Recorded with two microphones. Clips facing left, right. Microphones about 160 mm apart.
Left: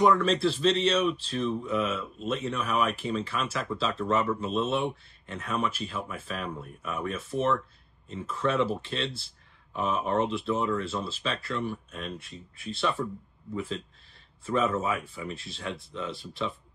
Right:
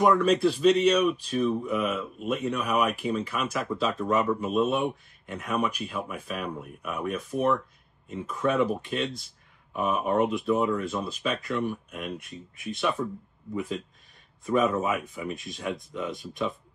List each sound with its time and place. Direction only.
0.0 s speech: 10° right (ahead or behind)
14.4 s speech: 15° right (ahead or behind)